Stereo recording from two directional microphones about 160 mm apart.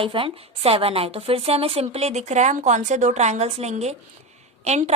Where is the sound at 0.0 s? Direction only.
35° right (ahead or behind).